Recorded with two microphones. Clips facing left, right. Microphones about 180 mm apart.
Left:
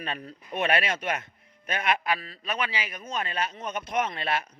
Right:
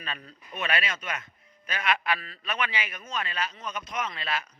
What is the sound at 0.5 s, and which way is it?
Speech, 55° left (ahead or behind).